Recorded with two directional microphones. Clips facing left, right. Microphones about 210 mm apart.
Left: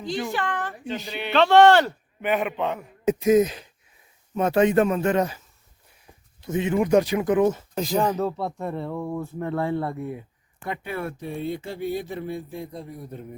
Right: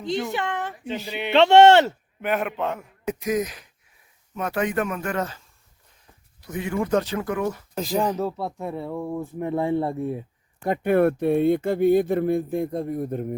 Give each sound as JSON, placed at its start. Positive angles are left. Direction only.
{"t": 0.3, "sound": "a woman's voice", "side_deg": -20}
{"t": 2.2, "sound": "a man's voice", "side_deg": 0}
{"t": 3.0, "sound": "speech", "side_deg": 25}
{"t": 6.4, "sound": "speech", "side_deg": 25}
{"t": 7.8, "sound": "speech", "side_deg": 0}
{"t": 10.6, "sound": "speech", "side_deg": -50}